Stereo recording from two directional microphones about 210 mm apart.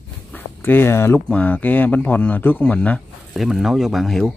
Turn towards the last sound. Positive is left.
turn(degrees=0)  # may be behind; listen again after turning